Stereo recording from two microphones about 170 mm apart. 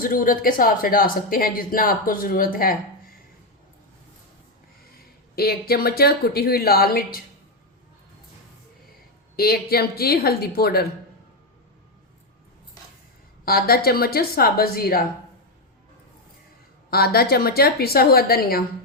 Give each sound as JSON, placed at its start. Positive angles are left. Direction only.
{"t": 0.0, "sound": "speech", "side_deg": 55}
{"t": 5.4, "sound": "speech", "side_deg": 65}
{"t": 9.3, "sound": "speech", "side_deg": 65}
{"t": 13.4, "sound": "speech", "side_deg": 65}
{"t": 16.9, "sound": "speech", "side_deg": 65}